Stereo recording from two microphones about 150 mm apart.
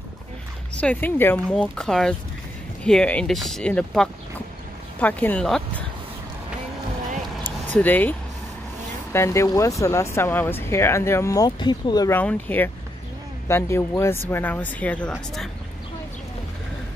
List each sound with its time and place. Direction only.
0.7 s speech: 10° left (ahead or behind)
7.4 s a sound: 10° left (ahead or behind)
9.1 s speech: 20° left (ahead or behind)
12.1 s speech: 10° left (ahead or behind)